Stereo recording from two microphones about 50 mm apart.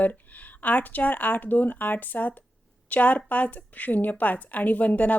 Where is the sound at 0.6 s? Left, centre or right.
Left.